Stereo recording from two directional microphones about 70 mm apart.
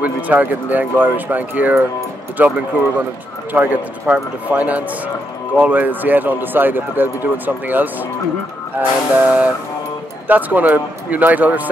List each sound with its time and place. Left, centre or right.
0.0 s speech: right